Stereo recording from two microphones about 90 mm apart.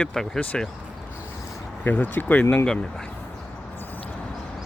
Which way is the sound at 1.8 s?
20° left (ahead or behind).